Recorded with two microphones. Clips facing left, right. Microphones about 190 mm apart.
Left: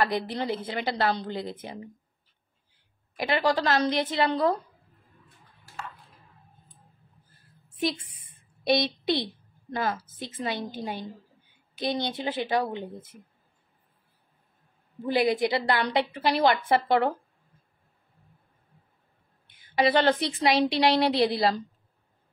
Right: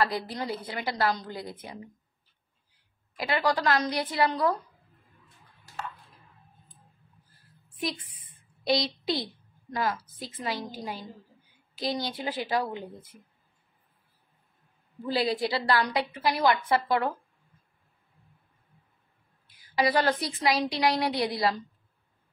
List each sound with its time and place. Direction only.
0.0 s a woman's voice: 25° left (ahead or behind)
3.2 s a woman's voice: 25° left (ahead or behind)
7.7 s a woman's voice: 25° left (ahead or behind)
15.0 s a woman's voice: 20° left (ahead or behind)
19.5 s a woman's voice: 25° left (ahead or behind)